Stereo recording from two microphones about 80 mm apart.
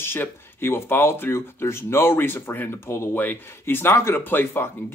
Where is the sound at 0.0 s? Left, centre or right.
Left.